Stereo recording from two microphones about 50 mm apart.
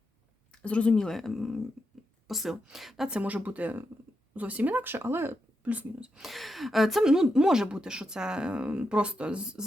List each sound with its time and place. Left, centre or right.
0.5 s a woman's voice: left; by 3.1 s centre
3.1 s speech: right
5.6 s speech: right
6.2 s a woman's voice: centre